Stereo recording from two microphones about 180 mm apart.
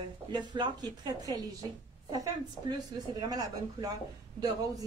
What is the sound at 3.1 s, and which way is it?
Speech, 20° right (ahead or behind).